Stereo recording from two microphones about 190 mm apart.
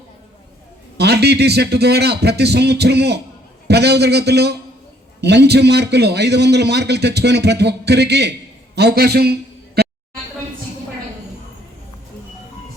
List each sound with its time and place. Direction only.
0.9 s a man's voice: 60° right (ahead or behind)